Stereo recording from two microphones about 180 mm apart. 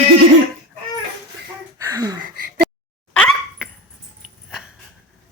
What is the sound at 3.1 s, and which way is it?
Dog, 5° left (ahead or behind).